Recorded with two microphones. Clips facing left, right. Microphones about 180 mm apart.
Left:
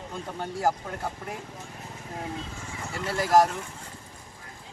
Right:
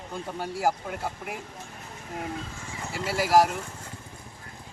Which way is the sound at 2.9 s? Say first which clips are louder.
Even; 5° right (ahead or behind).